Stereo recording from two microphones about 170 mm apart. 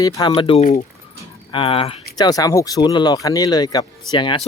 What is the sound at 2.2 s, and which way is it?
Speech, 20° left (ahead or behind).